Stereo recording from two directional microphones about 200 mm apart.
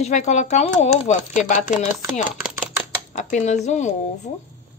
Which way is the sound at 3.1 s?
35° left (ahead or behind).